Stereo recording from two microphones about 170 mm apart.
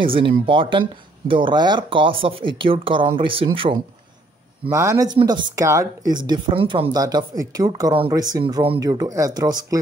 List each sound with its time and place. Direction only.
0.0 s speech: 30° right (ahead or behind)
4.6 s speech: 15° right (ahead or behind)